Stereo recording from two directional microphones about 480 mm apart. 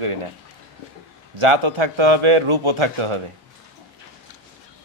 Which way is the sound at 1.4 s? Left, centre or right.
Right.